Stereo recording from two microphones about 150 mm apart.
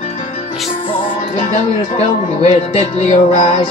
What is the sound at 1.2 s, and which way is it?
Speech, 45° left (ahead or behind).